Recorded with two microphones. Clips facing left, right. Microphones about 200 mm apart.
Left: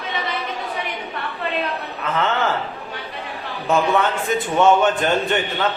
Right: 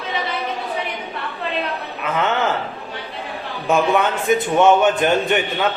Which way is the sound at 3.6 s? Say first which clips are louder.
Right 1 dB; 15° right (ahead or behind).